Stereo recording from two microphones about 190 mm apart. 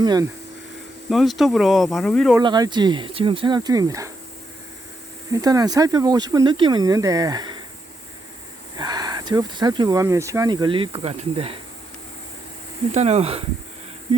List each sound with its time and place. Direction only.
0.0 s speech: 20° right (ahead or behind)
1.1 s speech: centre (ahead or behind)
2.4 s speech: 25° right (ahead or behind)
5.3 s speech: 20° right (ahead or behind)
8.8 s speech: 20° right (ahead or behind)
12.9 s speech: 35° right (ahead or behind)